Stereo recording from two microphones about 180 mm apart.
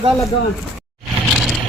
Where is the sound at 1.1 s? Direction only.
Centre (ahead or behind).